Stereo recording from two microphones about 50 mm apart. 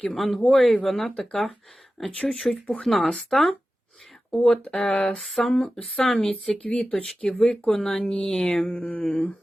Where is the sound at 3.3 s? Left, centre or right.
Centre.